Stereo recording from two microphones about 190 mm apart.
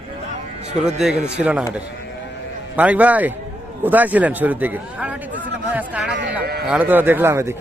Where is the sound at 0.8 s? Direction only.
Centre (ahead or behind).